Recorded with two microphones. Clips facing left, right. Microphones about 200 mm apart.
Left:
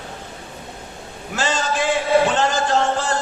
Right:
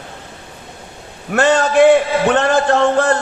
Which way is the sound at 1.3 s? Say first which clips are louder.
Right 9 dB; 60° right (ahead or behind).